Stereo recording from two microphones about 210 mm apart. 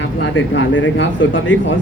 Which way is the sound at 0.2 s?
60° left (ahead or behind).